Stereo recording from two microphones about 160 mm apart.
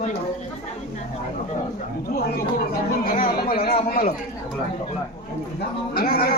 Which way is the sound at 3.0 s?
65° left (ahead or behind).